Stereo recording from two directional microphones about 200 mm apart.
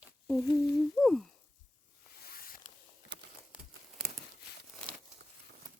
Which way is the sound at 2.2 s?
45° left (ahead or behind).